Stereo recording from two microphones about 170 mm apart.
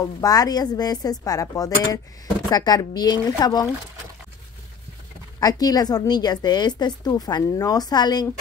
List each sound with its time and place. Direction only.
0.2 s speech: 20° left (ahead or behind)
5.4 s speech: 20° left (ahead or behind)